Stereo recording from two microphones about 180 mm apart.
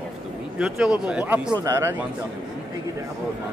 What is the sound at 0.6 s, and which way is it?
Speech, 5° right (ahead or behind).